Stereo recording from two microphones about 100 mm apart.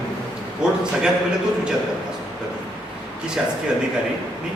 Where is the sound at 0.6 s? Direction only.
10° right (ahead or behind).